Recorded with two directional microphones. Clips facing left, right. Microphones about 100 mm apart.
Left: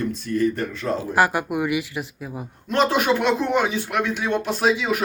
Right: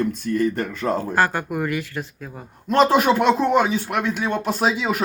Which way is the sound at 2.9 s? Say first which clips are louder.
Right 3 dB; 40° right (ahead or behind).